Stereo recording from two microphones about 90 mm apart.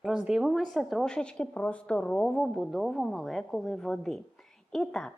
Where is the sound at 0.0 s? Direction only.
5° right (ahead or behind).